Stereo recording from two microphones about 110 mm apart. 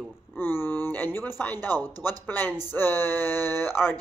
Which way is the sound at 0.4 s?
20° left (ahead or behind).